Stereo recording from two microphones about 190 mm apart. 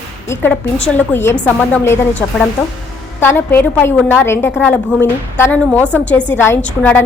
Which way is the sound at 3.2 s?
10° left (ahead or behind).